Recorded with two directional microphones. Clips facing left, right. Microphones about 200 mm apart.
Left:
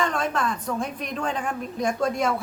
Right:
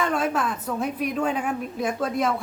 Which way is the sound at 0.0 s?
5° right (ahead or behind).